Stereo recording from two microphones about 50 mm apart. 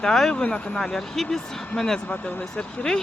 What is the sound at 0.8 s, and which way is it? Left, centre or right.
Speech, centre.